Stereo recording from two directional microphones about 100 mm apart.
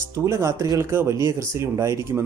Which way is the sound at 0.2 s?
30° right (ahead or behind).